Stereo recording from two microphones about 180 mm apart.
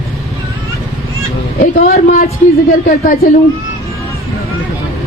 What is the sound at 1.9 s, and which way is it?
Speech, 50° left (ahead or behind).